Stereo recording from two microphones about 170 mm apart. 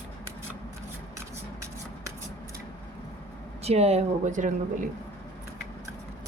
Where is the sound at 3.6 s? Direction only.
40° right (ahead or behind).